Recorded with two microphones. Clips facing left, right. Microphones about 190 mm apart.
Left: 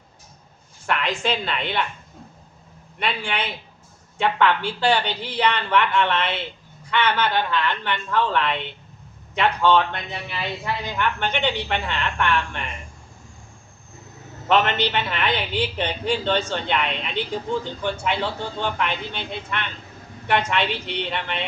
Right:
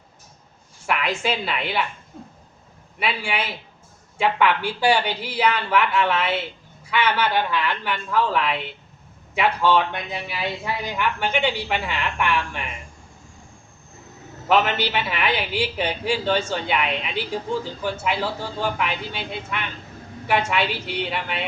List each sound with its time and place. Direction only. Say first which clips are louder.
0.9 s a woman's voice: even; 5° right (ahead or behind)
3.0 s a woman's voice: even; 5° right (ahead or behind)
14.4 s a woman's voice: even; 5° right (ahead or behind)